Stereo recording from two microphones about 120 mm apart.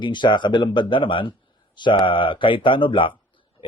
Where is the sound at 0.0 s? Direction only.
40° left (ahead or behind).